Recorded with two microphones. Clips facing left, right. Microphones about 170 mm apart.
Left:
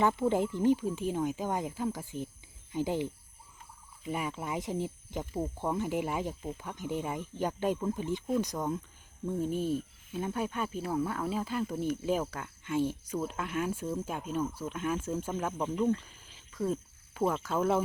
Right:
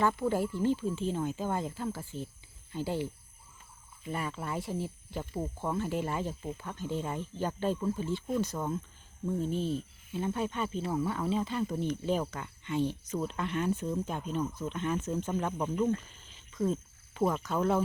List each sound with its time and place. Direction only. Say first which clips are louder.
0.0 s speech: left 1 dB; 20° left (ahead or behind)